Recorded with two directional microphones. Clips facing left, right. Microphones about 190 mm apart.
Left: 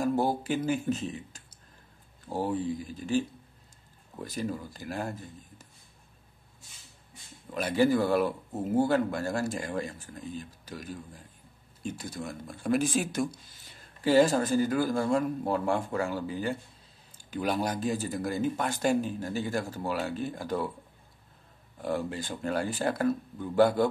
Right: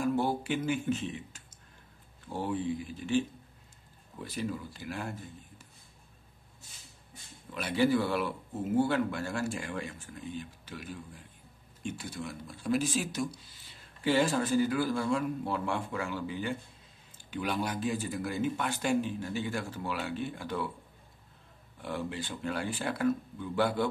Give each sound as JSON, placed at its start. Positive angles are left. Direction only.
{"t": 0.0, "sound": "speech", "side_deg": 40}
{"t": 7.5, "sound": "speech", "side_deg": 45}
{"t": 21.7, "sound": "speech", "side_deg": 40}